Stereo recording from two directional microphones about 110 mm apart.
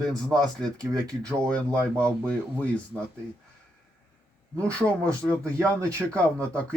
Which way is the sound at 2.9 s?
15° right (ahead or behind).